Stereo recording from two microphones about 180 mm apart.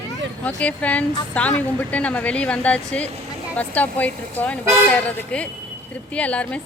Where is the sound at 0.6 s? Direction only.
5° left (ahead or behind).